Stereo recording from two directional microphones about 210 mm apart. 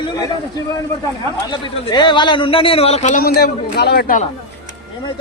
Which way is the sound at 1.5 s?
20° left (ahead or behind).